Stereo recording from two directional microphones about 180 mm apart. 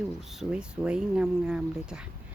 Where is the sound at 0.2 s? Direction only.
Centre (ahead or behind).